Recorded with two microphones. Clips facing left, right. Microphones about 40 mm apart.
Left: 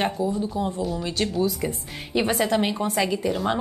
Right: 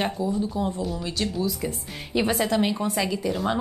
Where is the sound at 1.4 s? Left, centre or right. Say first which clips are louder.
Left 3 dB; centre.